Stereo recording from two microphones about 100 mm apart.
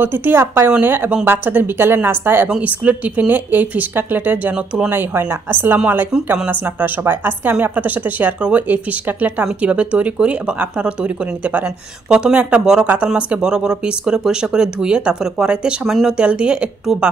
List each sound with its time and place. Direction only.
0.0 s a woman's voice: 20° right (ahead or behind)